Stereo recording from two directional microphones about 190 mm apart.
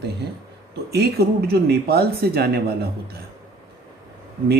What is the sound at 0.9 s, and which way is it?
Speech, 55° right (ahead or behind).